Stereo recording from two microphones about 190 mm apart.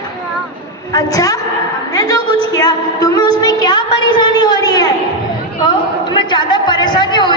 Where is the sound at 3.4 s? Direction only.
20° left (ahead or behind).